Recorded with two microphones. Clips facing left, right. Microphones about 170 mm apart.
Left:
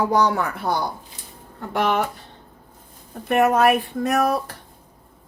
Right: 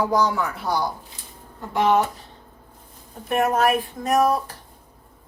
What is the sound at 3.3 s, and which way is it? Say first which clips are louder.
A woman's voice: left 3 dB; 65° left (ahead or behind).